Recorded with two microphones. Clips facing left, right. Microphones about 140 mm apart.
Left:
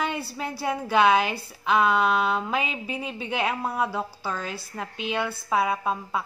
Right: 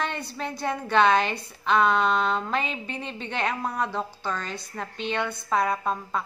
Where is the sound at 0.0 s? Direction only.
5° left (ahead or behind).